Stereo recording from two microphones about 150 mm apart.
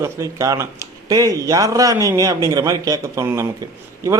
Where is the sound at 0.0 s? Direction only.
20° right (ahead or behind).